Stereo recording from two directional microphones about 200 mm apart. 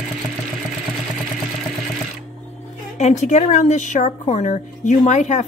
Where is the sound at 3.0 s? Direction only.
35° left (ahead or behind).